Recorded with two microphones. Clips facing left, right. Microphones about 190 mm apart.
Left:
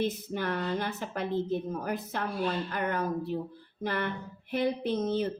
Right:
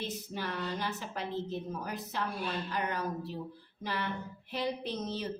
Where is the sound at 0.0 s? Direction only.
55° left (ahead or behind).